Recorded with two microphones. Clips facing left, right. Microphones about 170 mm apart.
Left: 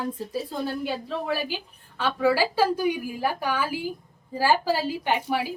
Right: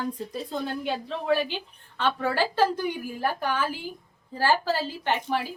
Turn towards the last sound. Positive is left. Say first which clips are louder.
# left 2 dB
turn(degrees=10)  # may be behind; listen again after turning